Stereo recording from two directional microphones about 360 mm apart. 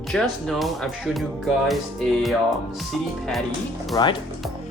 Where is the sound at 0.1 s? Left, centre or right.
Centre.